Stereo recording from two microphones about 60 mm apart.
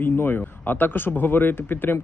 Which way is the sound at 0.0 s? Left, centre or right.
Left.